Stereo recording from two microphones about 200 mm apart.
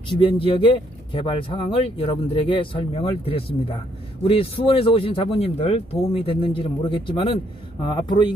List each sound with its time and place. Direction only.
0.1 s speech: 25° left (ahead or behind)